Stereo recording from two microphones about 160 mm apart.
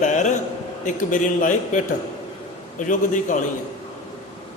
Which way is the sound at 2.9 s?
55° left (ahead or behind).